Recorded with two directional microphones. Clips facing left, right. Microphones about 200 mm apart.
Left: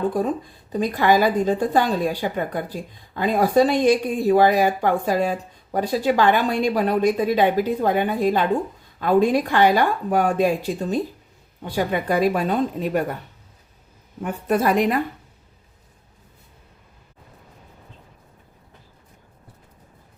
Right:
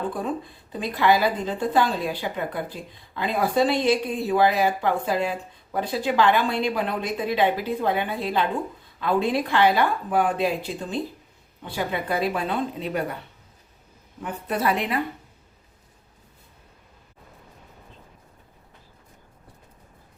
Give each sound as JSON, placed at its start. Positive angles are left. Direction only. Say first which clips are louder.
{"t": 0.7, "sound": "speech", "louder": "left 3 dB", "side_deg": 45}
{"t": 14.2, "sound": "speech", "louder": "left 6 dB", "side_deg": 45}